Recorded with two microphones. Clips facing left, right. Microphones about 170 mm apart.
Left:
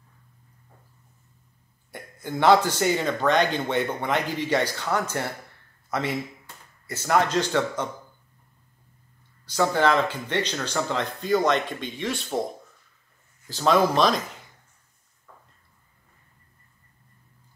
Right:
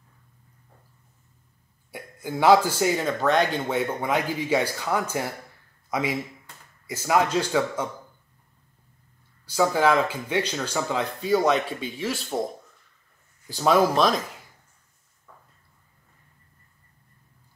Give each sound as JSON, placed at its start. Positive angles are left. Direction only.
{"t": 1.9, "sound": "a man's voice", "side_deg": -5}
{"t": 9.5, "sound": "speech", "side_deg": -5}
{"t": 13.5, "sound": "a man's voice", "side_deg": -10}